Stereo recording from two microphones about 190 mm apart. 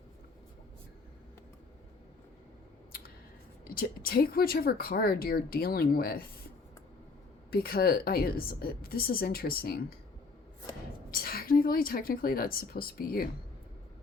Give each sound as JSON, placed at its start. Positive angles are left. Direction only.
{"t": 3.6, "sound": "a woman's voice", "side_deg": 50}
{"t": 7.5, "sound": "a woman's voice", "side_deg": 55}
{"t": 11.1, "sound": "a woman's voice", "side_deg": 50}